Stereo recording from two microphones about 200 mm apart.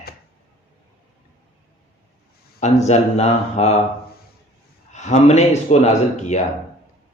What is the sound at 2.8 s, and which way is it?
Speech, 35° left (ahead or behind).